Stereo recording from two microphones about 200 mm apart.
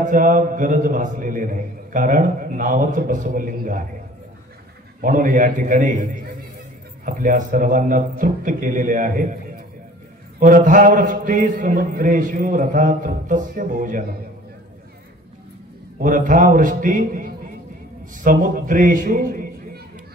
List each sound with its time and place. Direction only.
0.0 s a man's voice: 40° right (ahead or behind)
5.0 s a man's voice: 45° right (ahead or behind)
10.4 s a man's voice: 40° right (ahead or behind)
16.0 s a man's voice: 40° right (ahead or behind)